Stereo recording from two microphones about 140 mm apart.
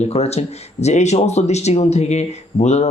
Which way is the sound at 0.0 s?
50° left (ahead or behind).